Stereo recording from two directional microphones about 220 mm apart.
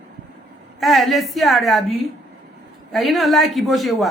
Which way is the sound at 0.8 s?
Centre (ahead or behind).